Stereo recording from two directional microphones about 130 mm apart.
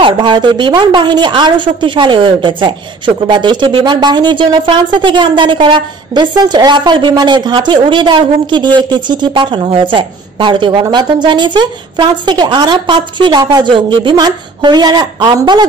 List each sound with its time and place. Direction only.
0.0 s speech: 40° right (ahead or behind)